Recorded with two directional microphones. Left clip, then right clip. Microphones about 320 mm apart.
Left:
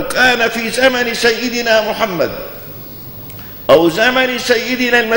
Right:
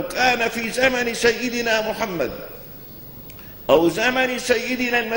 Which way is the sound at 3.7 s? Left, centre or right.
Centre.